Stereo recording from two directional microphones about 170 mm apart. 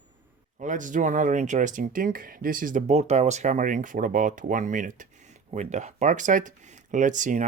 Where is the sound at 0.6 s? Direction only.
50° right (ahead or behind).